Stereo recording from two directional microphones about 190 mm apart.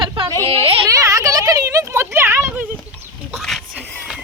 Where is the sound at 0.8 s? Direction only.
15° right (ahead or behind).